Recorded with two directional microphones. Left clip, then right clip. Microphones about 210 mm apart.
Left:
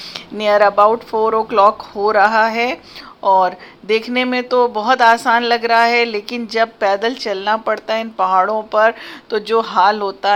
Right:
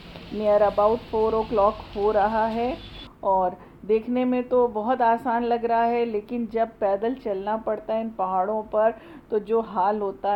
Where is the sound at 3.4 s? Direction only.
5° left (ahead or behind).